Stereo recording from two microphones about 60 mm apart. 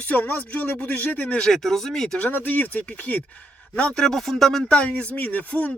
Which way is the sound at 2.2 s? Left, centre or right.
Left.